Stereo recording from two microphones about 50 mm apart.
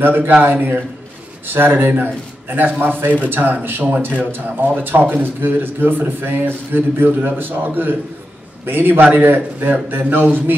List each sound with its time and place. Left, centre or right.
0.0 s a man's voice: right